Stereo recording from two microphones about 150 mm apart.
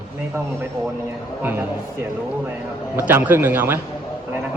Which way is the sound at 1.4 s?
15° right (ahead or behind).